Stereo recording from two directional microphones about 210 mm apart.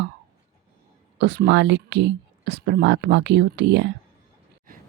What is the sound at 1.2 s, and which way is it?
Speech, 55° right (ahead or behind).